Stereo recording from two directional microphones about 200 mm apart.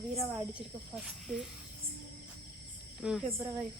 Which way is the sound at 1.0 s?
5° right (ahead or behind).